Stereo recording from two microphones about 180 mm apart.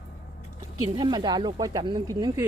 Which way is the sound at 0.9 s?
25° right (ahead or behind).